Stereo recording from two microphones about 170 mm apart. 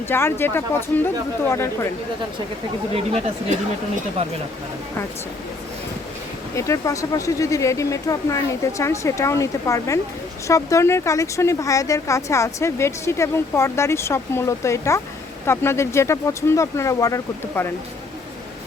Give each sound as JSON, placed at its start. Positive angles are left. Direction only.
{"t": 0.1, "sound": "speech", "side_deg": 15}
{"t": 2.9, "sound": "speech", "side_deg": -35}
{"t": 6.6, "sound": "speech", "side_deg": 20}